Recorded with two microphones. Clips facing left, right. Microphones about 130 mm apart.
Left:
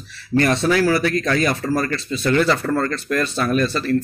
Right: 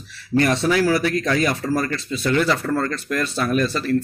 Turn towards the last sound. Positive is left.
turn(degrees=-10)  # may be behind; listen again after turning